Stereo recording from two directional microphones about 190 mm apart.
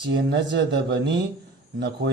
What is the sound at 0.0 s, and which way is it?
A man's voice, 65° right (ahead or behind).